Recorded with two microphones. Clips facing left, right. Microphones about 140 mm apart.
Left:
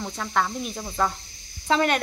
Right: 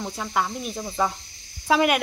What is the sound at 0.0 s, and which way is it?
Speech, 10° right (ahead or behind).